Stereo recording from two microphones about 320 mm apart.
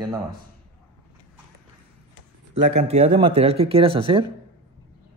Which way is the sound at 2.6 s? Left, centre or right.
Right.